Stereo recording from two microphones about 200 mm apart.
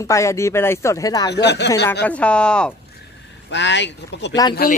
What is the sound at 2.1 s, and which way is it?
Speech, 5° left (ahead or behind).